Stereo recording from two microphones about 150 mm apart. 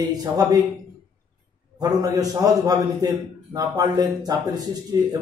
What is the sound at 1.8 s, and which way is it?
A man's voice, 25° right (ahead or behind).